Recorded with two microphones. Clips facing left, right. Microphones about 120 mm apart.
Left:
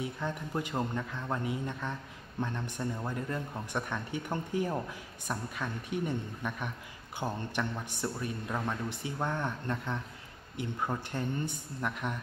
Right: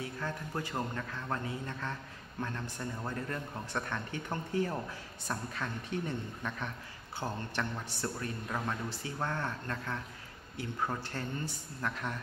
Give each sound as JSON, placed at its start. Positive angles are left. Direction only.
{"t": 0.0, "sound": "speech", "side_deg": 20}